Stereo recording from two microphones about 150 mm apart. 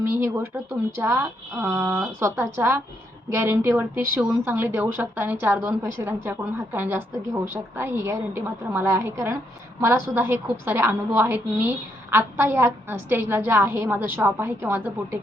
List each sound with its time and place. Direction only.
0.2 s a woman's voice: 15° right (ahead or behind)